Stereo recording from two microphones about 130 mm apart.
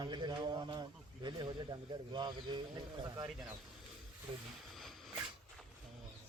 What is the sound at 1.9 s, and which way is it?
Speech, 35° right (ahead or behind).